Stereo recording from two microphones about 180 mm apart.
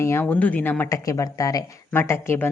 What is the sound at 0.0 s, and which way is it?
A woman's voice, 15° left (ahead or behind).